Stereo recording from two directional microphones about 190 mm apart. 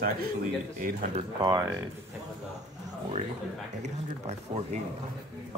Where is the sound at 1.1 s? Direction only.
20° right (ahead or behind).